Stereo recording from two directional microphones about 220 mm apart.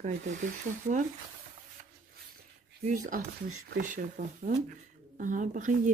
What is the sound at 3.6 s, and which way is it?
Speech, 40° right (ahead or behind).